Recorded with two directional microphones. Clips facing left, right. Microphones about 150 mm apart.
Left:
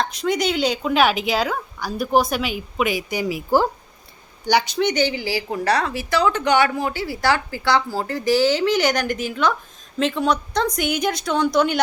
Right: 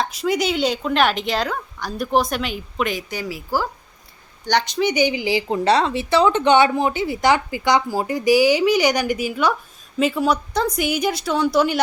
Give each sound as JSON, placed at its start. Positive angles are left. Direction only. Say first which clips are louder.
{"t": 0.0, "sound": "speech", "louder": "even", "side_deg": -5}
{"t": 4.4, "sound": "speech", "louder": "left 1 dB", "side_deg": 5}